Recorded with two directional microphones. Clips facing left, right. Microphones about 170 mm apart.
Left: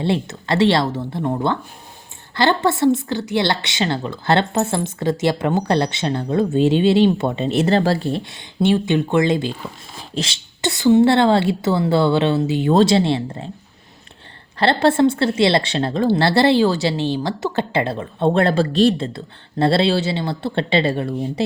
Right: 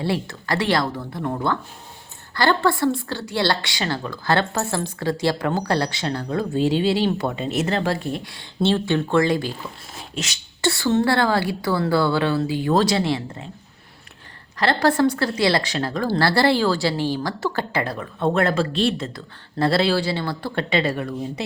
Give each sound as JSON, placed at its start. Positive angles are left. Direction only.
{"t": 0.0, "sound": "a woman's voice", "side_deg": 25}
{"t": 14.6, "sound": "a woman's voice", "side_deg": 25}